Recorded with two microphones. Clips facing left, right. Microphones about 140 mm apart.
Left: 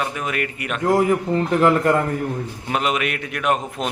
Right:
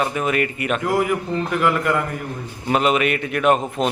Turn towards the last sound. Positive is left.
turn(degrees=0)  # may be behind; listen again after turning